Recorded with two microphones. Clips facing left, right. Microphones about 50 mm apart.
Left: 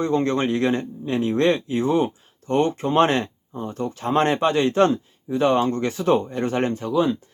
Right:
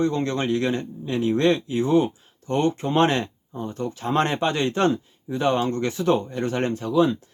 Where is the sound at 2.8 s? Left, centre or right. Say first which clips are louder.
Left 2 dB; centre.